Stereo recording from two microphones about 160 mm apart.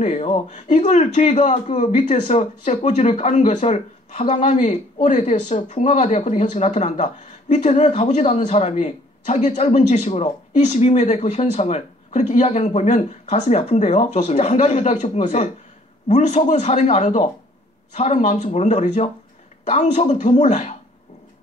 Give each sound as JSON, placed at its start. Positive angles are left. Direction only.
{"t": 0.0, "sound": "speech", "side_deg": 50}